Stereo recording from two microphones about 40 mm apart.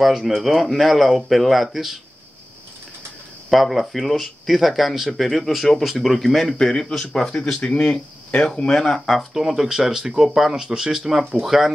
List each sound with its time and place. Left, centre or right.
0.0 s speech: centre
3.4 s speech: centre
9.3 s speech: centre